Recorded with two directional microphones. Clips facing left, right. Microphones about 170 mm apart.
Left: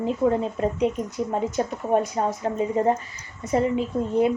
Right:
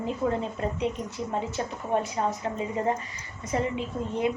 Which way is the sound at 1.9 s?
40° left (ahead or behind).